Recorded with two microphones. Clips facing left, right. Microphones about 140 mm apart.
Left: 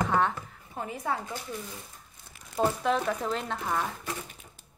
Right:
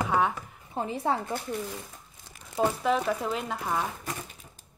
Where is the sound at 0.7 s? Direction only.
30° right (ahead or behind).